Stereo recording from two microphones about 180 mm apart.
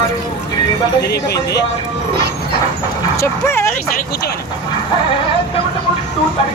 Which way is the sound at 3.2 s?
15° left (ahead or behind).